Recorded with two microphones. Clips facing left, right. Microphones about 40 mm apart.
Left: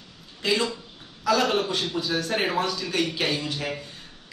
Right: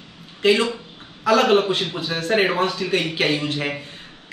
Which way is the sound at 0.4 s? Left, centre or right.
Right.